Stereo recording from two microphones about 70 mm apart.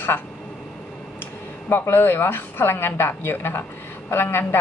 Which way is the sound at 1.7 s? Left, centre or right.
Left.